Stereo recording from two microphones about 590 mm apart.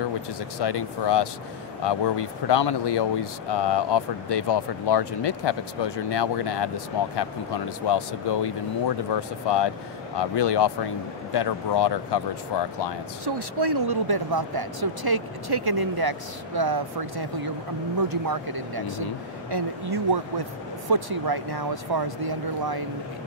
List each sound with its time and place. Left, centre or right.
0.6 s speech: left
7.8 s speech: left
13.2 s speech: right